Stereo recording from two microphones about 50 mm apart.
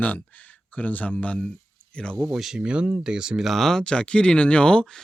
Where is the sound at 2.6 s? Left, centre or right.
Centre.